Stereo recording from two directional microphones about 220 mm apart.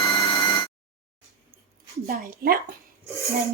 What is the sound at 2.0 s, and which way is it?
Speech, 40° right (ahead or behind).